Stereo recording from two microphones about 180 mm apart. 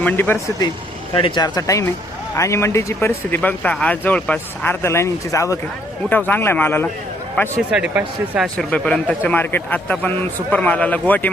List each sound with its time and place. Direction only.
0.0 s speech: 10° left (ahead or behind)
1.1 s speech: 25° left (ahead or behind)
7.5 s speech: 10° right (ahead or behind)
8.5 s speech: 5° left (ahead or behind)